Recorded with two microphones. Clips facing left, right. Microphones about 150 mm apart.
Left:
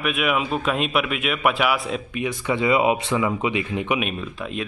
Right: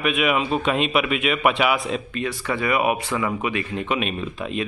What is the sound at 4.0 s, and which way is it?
Speech, centre (ahead or behind).